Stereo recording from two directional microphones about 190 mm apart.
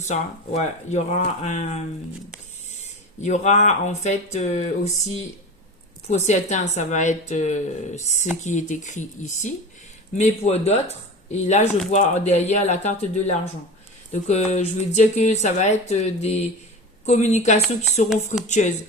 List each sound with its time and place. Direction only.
0.0 s speech: 35° left (ahead or behind)
3.2 s speech: 35° left (ahead or behind)
6.1 s speech: 35° left (ahead or behind)